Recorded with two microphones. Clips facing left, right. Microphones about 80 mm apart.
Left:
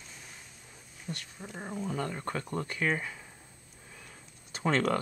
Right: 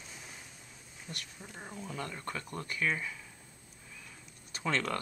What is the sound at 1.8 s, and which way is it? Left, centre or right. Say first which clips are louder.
Speech: left 5 dB; left.